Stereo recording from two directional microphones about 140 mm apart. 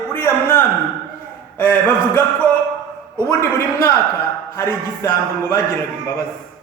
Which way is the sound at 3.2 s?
20° left (ahead or behind).